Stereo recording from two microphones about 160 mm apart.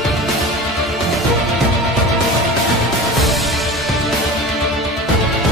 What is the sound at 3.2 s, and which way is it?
Music, centre (ahead or behind).